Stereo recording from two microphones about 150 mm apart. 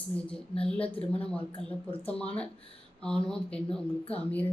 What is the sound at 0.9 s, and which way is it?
Speech, 40° left (ahead or behind).